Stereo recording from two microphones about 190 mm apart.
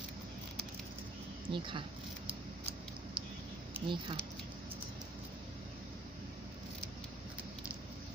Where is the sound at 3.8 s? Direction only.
25° right (ahead or behind).